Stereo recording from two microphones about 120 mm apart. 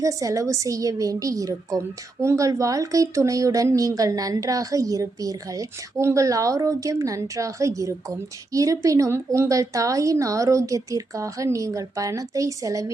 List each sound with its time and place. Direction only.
0.0 s speech: 25° right (ahead or behind)